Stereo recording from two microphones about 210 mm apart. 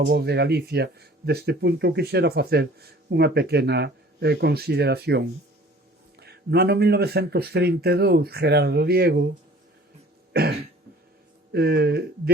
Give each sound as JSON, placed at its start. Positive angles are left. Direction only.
{"t": 0.0, "sound": "speech", "side_deg": -50}
{"t": 11.5, "sound": "speech", "side_deg": -50}